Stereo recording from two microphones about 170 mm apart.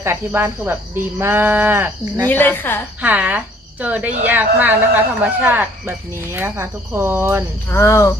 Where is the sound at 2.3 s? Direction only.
10° left (ahead or behind).